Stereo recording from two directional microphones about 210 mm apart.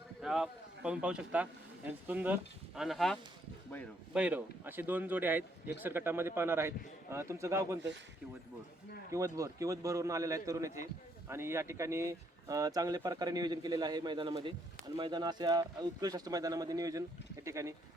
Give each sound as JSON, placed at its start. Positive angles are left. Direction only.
{"t": 0.2, "sound": "a man's voice", "side_deg": 0}
{"t": 9.1, "sound": "speech", "side_deg": -15}